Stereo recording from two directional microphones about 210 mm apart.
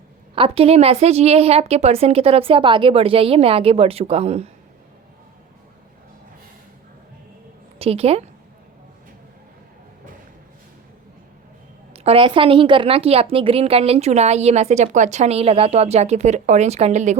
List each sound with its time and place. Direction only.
0.3 s a woman's voice: 25° right (ahead or behind)
7.8 s a woman's voice: 30° right (ahead or behind)
11.9 s a woman's voice: 30° right (ahead or behind)